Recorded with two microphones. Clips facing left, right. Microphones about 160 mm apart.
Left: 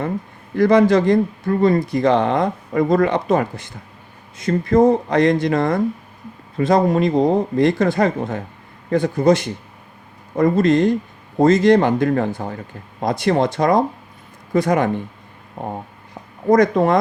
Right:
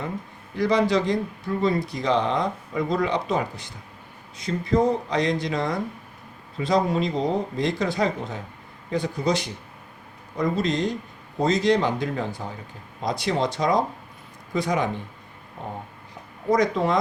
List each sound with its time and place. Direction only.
0.5 s speech: 55° left (ahead or behind)
16.5 s speech: 50° left (ahead or behind)